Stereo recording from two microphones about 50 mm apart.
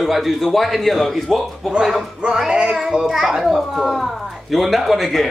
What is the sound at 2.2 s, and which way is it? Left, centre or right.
Music, centre.